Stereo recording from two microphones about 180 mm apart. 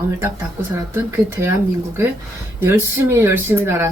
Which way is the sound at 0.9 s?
15° right (ahead or behind).